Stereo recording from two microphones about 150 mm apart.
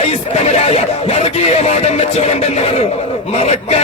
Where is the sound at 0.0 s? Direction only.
45° left (ahead or behind).